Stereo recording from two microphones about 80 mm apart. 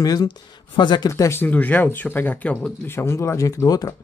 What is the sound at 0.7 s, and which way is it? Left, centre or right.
Speech, left.